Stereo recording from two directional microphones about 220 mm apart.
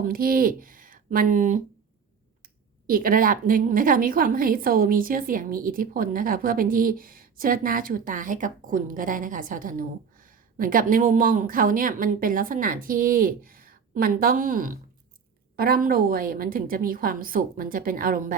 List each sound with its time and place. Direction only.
0.0 s speech: 40° right (ahead or behind)
2.8 s a woman's voice: 40° right (ahead or behind)